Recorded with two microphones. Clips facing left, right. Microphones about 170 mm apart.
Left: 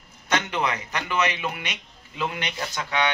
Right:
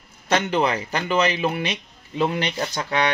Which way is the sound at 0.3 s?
30° right (ahead or behind).